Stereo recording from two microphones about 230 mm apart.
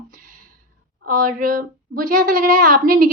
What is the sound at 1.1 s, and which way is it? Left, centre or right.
A woman's voice, right.